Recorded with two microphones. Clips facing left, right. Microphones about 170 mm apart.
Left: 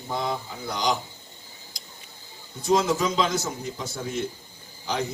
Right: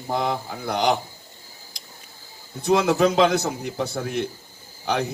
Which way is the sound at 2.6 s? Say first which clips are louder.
Right 4 dB; 65° right (ahead or behind).